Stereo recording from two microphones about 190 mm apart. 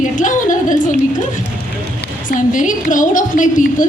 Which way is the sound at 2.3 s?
45° left (ahead or behind).